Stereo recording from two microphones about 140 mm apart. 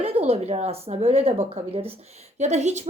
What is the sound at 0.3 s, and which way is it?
Speech, 50° right (ahead or behind).